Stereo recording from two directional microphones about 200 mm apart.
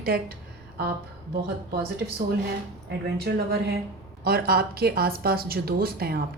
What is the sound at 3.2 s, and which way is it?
A woman's voice, 50° right (ahead or behind).